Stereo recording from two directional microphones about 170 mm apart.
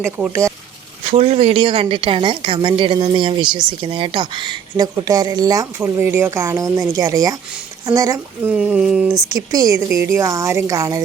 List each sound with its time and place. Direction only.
0.0 s speech: 15° right (ahead or behind)
1.1 s a woman's voice: 40° right (ahead or behind); by 8.5 s 20° right (ahead or behind)
8.5 s speech: 5° right (ahead or behind)
9.3 s a woman's voice: 20° right (ahead or behind)